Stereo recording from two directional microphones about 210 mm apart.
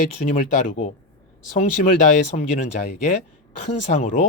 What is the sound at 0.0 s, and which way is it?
Speech, 40° left (ahead or behind).